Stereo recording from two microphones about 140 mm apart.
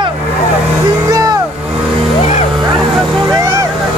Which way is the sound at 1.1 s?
25° right (ahead or behind).